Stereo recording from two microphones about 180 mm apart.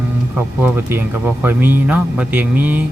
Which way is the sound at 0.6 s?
10° right (ahead or behind).